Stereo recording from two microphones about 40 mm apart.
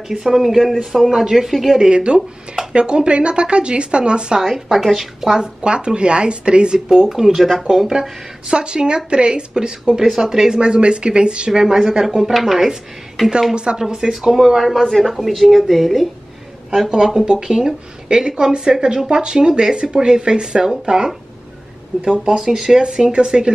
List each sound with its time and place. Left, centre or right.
0.2 s a woman's voice: centre
1.8 s speech: right
4.4 s speech: centre
5.4 s speech: right
7.1 s speech: centre
10.6 s a woman's voice: right; by 12.7 s centre
13.2 s a woman's voice: centre
13.7 s speech: centre
14.9 s a woman's voice: centre
15.1 s a woman's voice: centre
16.7 s speech: centre
22.0 s speech: right
22.3 s speech: centre